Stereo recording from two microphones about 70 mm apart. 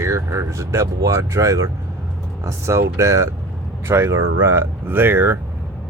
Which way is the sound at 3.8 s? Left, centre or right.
Right.